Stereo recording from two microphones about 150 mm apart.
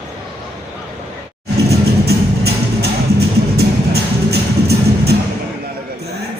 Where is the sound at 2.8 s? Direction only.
90° right.